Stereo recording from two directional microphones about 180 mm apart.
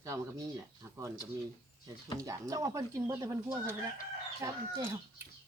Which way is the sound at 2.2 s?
20° right (ahead or behind).